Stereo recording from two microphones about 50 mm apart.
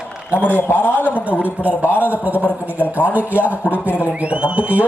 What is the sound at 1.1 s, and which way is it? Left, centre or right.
A man's voice, right.